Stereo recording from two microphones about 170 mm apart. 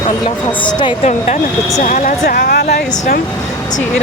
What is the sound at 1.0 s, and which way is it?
Speech, 45° left (ahead or behind).